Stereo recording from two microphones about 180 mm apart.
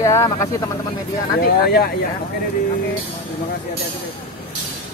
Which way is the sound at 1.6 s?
60° left (ahead or behind).